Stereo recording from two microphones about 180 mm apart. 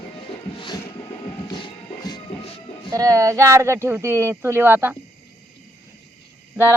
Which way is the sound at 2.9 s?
20° right (ahead or behind).